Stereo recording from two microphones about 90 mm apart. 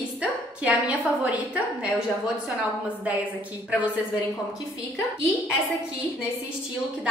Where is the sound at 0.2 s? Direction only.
15° right (ahead or behind).